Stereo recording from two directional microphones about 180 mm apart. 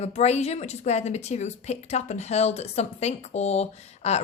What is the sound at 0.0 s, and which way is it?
A woman's voice, 35° left (ahead or behind).